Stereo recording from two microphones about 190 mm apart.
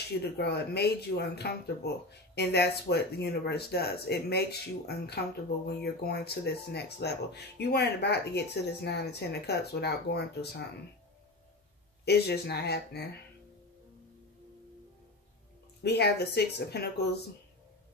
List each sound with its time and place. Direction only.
0.2 s speech: 60° left (ahead or behind)
12.0 s speech: 60° left (ahead or behind)
15.8 s speech: 60° left (ahead or behind)